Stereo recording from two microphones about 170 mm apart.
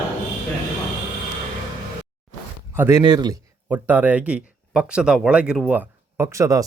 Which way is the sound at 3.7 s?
10° right (ahead or behind).